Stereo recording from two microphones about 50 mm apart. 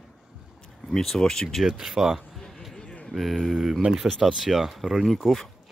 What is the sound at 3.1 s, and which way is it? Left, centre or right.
Speech, centre.